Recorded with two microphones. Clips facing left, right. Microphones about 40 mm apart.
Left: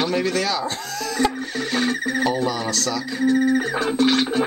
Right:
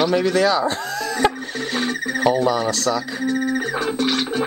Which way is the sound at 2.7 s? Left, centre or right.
Centre.